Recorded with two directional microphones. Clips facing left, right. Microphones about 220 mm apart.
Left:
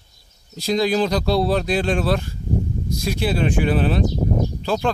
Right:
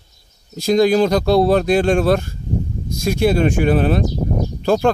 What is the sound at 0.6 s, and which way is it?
Speech, 45° right (ahead or behind).